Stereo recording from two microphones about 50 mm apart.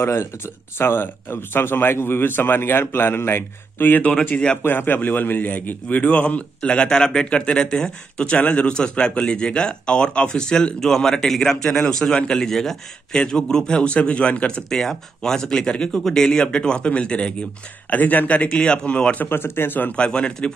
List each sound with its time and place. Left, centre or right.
0.0 s speech: left
0.7 s speech: left
4.0 s a man's voice: left
4.6 s a man's voice: left
14.7 s speech: centre
17.8 s speech: left
18.5 s a man's voice: left
19.2 s speech: left
19.9 s a man's voice: centre